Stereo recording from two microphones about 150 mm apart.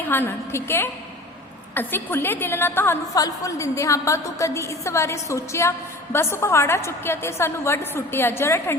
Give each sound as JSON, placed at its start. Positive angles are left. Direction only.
{"t": 0.0, "sound": "a woman's voice", "side_deg": 15}